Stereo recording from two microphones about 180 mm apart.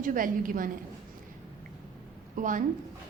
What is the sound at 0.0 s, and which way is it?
Speech, 50° right (ahead or behind).